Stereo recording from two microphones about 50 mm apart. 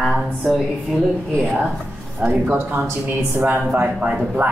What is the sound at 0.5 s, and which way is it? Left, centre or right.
A woman's voice, centre.